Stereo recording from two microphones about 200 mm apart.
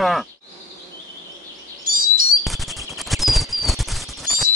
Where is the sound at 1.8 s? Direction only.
45° right (ahead or behind).